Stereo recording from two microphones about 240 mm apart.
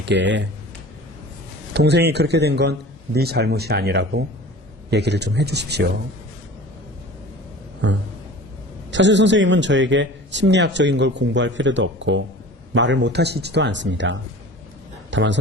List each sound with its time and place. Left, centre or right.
0.0 s a man's voice: right
1.7 s a man's voice: right
8.9 s a man's voice: right